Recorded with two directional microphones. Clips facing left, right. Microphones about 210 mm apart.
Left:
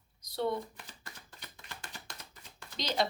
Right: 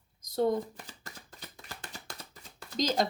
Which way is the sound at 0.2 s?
45° right (ahead or behind).